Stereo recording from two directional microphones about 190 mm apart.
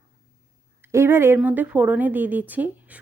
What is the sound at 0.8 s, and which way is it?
Speech, 15° right (ahead or behind).